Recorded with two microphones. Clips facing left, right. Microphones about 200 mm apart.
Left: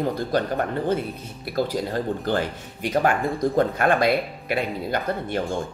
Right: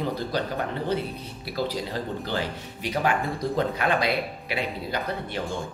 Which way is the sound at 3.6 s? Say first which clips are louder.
Left 4 dB; 50° left (ahead or behind).